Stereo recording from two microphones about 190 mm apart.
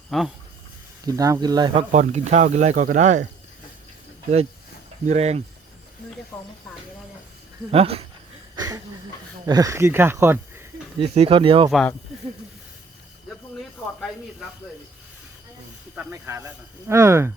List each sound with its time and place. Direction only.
0.1 s speech: centre (ahead or behind)
1.0 s speech: 20° right (ahead or behind)
1.9 s speech: 40° right (ahead or behind)
5.0 s speech: 35° right (ahead or behind)
6.3 s speech: 10° left (ahead or behind)
7.7 s speech: 30° right (ahead or behind)
8.5 s speech: 20° right (ahead or behind)
10.9 s speech: 30° right (ahead or behind)
16.0 s speech: 10° right (ahead or behind)